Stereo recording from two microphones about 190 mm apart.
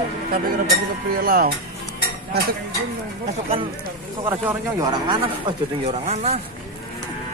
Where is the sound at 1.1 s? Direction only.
50° right (ahead or behind).